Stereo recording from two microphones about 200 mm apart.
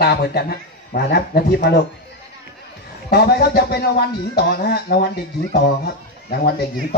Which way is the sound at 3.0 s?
50° left (ahead or behind).